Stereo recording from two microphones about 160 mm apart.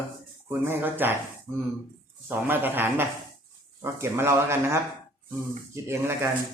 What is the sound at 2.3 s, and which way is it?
Speech, 10° right (ahead or behind).